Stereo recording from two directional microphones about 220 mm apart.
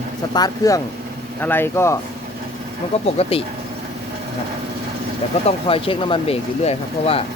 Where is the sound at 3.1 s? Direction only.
30° left (ahead or behind).